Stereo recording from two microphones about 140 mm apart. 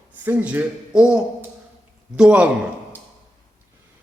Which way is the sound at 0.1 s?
10° right (ahead or behind).